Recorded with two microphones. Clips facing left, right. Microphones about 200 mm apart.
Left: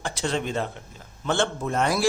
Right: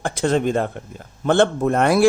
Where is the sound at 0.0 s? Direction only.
50° right (ahead or behind).